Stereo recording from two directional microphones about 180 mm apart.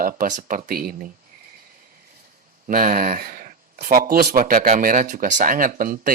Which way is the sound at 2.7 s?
50° right (ahead or behind).